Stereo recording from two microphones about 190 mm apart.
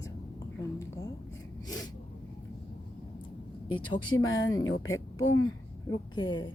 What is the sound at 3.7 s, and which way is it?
Speech, 25° left (ahead or behind).